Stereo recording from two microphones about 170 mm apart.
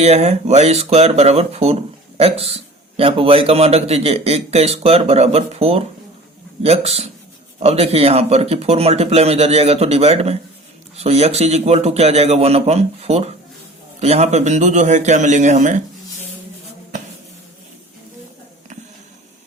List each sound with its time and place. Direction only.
0.0 s a man's voice: 40° right (ahead or behind)